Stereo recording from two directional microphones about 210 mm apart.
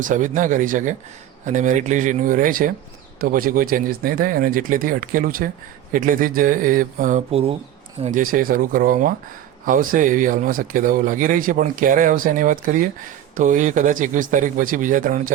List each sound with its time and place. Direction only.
0.0 s speech: 40° right (ahead or behind)
8.0 s speech: 40° right (ahead or behind)